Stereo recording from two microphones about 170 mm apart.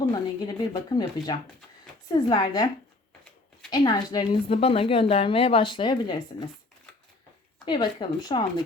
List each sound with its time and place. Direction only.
0.1 s speech: 25° left (ahead or behind)
3.7 s a woman's voice: 25° left (ahead or behind)
7.6 s speech: 25° left (ahead or behind)